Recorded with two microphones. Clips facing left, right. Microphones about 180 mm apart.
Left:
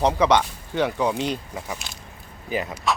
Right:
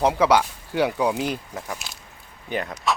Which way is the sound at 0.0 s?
5° right (ahead or behind).